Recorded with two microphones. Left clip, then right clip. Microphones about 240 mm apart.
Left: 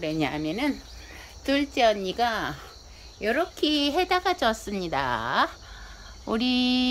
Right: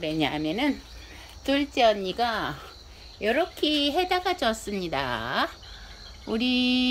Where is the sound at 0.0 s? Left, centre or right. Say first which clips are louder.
Right 1 dB; centre.